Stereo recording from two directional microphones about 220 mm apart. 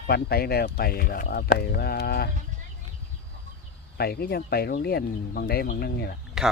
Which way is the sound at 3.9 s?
45° left (ahead or behind).